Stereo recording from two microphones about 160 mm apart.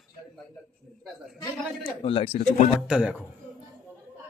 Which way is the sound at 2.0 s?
35° left (ahead or behind).